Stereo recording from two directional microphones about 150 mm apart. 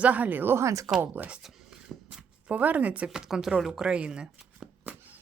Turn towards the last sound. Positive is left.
turn(degrees=-5)  # may be behind; listen again after turning